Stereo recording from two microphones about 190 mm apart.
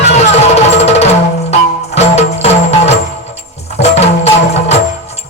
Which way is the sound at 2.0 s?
35° left (ahead or behind).